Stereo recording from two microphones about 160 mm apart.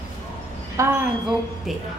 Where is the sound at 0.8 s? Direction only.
20° right (ahead or behind).